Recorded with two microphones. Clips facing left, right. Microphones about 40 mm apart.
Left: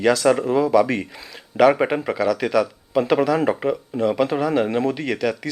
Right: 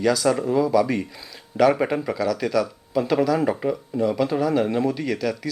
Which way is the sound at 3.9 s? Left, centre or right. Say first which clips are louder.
Left 2 dB; left.